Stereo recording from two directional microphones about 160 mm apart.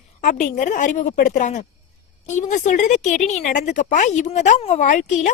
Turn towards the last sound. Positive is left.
turn(degrees=50)  # may be behind; listen again after turning